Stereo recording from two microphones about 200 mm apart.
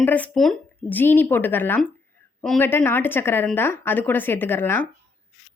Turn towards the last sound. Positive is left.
turn(degrees=10)  # may be behind; listen again after turning